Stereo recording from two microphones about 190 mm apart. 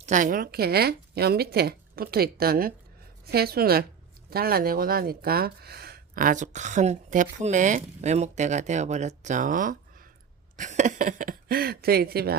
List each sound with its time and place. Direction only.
0.0 s speech: 40° right (ahead or behind)